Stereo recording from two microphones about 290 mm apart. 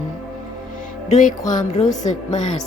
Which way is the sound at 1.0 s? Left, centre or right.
Left.